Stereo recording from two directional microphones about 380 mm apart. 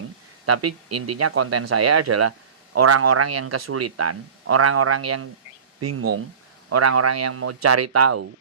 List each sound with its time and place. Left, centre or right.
0.4 s speech: right